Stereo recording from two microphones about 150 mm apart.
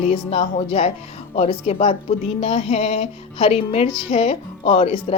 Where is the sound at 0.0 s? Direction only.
45° left (ahead or behind).